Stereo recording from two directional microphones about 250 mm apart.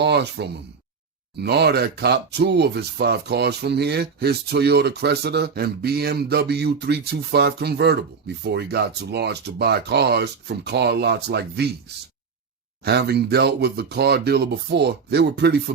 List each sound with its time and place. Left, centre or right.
0.0 s speech: right
12.8 s speech: right